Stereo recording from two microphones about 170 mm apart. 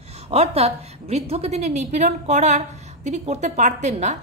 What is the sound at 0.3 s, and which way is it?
A woman's voice, 35° right (ahead or behind).